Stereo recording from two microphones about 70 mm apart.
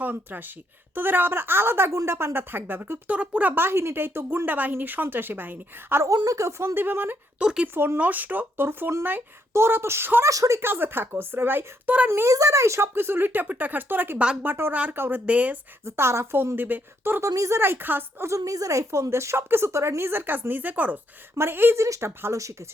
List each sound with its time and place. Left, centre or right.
0.0 s a woman's voice: right
6.2 s a woman's voice: right
6.7 s a woman's voice: right
7.3 s speech: centre
7.7 s a woman's voice: right
10.2 s a woman's voice: right
10.6 s a woman's voice: right
12.3 s a woman's voice: right
15.3 s speech: right
15.8 s a woman's voice: right
17.2 s a woman's voice: right
17.6 s a woman's voice: right
18.3 s a woman's voice: right
21.8 s a woman's voice: right